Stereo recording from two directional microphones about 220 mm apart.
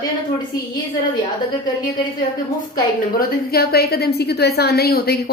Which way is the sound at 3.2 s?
45° left (ahead or behind).